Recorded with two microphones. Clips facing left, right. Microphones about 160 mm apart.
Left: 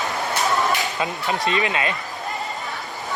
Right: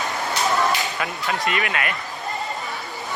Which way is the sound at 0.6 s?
20° left (ahead or behind).